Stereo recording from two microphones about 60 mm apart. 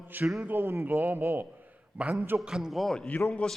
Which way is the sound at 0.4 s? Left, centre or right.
Right.